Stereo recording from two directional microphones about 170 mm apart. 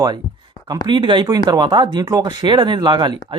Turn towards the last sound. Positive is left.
turn(degrees=-25)  # may be behind; listen again after turning